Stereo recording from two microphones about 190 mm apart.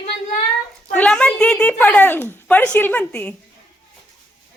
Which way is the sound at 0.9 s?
5° left (ahead or behind).